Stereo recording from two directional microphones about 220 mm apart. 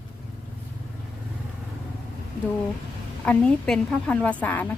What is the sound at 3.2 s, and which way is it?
A woman's voice, 5° left (ahead or behind).